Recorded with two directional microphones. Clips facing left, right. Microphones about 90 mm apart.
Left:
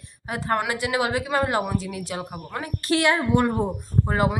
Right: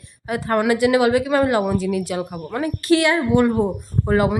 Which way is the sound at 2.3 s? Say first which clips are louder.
Right 7 dB; 15° left (ahead or behind).